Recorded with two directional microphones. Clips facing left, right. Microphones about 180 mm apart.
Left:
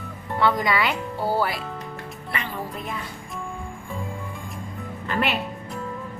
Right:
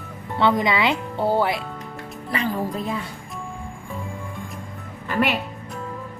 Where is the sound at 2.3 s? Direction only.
40° right (ahead or behind).